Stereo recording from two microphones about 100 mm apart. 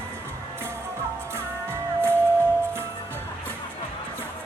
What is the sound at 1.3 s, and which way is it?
Music, 25° right (ahead or behind).